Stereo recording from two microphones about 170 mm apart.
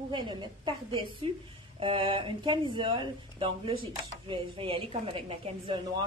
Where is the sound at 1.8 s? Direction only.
30° right (ahead or behind).